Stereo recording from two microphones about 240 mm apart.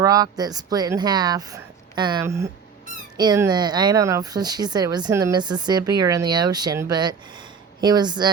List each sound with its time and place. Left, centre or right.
0.0 s speech: centre